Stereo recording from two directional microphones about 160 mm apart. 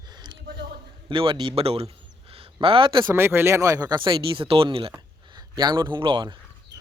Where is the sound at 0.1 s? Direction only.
30° right (ahead or behind).